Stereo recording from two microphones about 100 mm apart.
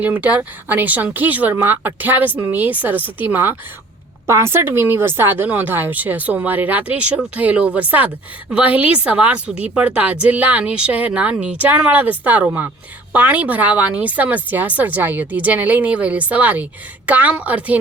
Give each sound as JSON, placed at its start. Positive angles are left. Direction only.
{"t": 0.0, "sound": "a woman's voice", "side_deg": -15}